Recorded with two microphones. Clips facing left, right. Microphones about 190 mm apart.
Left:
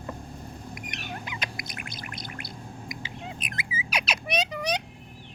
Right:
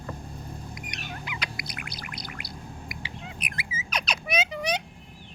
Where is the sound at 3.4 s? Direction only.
20° left (ahead or behind).